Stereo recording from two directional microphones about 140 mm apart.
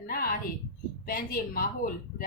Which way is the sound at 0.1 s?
90° left.